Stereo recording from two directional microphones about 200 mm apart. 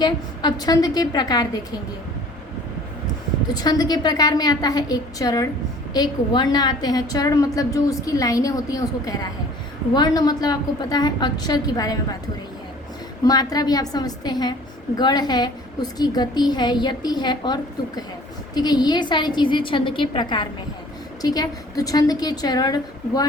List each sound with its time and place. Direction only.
0.0 s a woman's voice: 20° left (ahead or behind)
3.5 s a woman's voice: 20° left (ahead or behind)
13.2 s a woman's voice: 20° left (ahead or behind)